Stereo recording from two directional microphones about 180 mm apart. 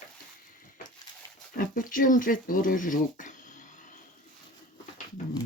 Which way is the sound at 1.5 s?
50° left (ahead or behind).